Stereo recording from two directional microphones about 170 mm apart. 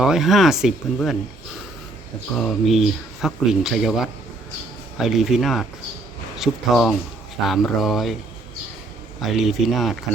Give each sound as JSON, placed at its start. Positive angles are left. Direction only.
{"t": 0.0, "sound": "speech", "side_deg": 0}
{"t": 2.3, "sound": "speech", "side_deg": 5}
{"t": 9.2, "sound": "speech", "side_deg": 0}